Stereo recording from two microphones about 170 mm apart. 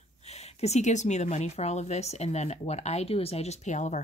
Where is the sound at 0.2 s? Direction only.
40° left (ahead or behind).